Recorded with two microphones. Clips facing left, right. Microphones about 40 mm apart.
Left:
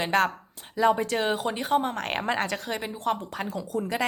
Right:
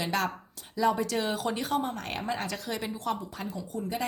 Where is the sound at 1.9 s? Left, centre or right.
Left.